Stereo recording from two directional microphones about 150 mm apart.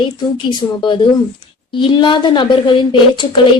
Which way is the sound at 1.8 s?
30° left (ahead or behind).